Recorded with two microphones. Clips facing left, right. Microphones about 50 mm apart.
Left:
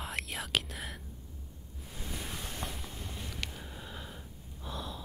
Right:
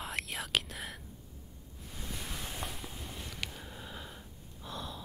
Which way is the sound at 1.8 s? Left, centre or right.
Centre.